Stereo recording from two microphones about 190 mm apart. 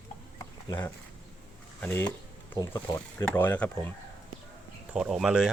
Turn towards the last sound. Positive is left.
turn(degrees=0)  # may be behind; listen again after turning